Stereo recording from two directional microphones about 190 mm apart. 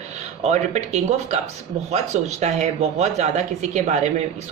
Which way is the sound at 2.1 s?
35° right (ahead or behind).